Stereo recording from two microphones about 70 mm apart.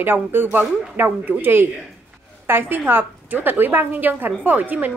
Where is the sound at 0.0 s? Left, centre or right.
Right.